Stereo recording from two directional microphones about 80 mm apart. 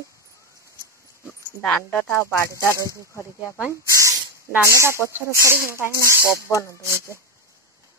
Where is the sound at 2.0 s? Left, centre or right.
Left.